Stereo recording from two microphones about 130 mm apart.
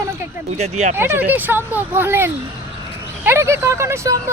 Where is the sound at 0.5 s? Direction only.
60° right (ahead or behind).